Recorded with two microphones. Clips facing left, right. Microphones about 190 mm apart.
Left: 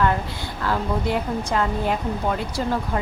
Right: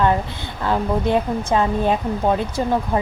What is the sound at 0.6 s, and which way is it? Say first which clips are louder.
A woman's voice: right 4 dB; 20° right (ahead or behind).